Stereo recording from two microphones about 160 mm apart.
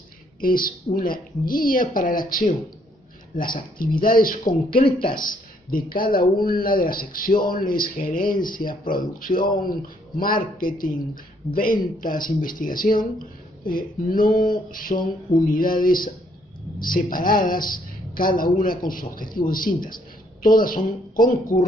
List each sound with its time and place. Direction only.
0.4 s speech: 60° left (ahead or behind)
4.8 s speech: 30° left (ahead or behind)
5.1 s speech: 60° left (ahead or behind)